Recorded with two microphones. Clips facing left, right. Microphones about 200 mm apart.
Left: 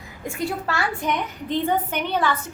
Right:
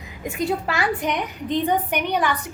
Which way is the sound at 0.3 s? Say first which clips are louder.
Right 3 dB; 20° right (ahead or behind).